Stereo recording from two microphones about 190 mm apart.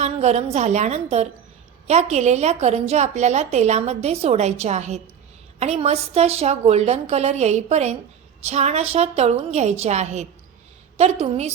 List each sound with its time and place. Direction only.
0.0 s a woman's voice: 35° right (ahead or behind)